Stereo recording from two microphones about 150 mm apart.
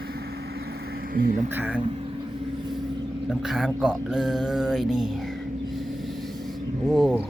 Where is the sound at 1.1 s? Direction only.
65° right (ahead or behind).